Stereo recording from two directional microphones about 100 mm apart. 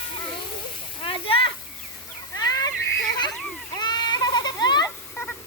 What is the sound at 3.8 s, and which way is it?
Goat, 45° left (ahead or behind).